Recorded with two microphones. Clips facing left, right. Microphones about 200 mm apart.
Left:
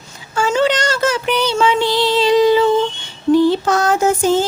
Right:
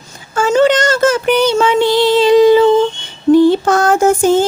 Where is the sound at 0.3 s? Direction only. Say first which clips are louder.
Right 5 dB; 45° right (ahead or behind).